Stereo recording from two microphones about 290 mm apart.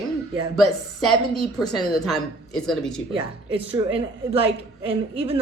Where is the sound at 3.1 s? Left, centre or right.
Centre.